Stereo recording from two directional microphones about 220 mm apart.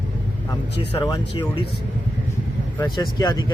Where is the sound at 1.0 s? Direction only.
20° left (ahead or behind).